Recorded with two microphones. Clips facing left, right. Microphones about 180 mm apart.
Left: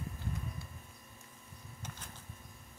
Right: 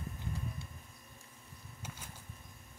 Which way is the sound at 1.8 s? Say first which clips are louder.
Even; 10° right (ahead or behind).